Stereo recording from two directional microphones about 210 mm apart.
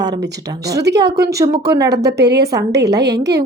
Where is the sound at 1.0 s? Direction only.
50° right (ahead or behind).